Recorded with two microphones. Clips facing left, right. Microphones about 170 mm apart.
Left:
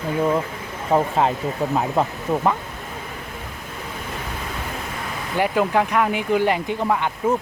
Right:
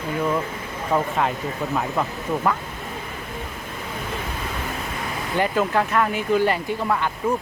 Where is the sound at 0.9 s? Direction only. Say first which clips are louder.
Left 3 dB; 30° left (ahead or behind).